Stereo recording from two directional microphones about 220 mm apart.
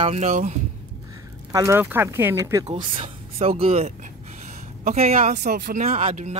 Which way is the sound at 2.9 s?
25° right (ahead or behind).